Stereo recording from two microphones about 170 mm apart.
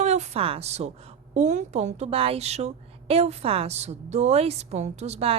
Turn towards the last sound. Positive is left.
turn(degrees=-35)  # may be behind; listen again after turning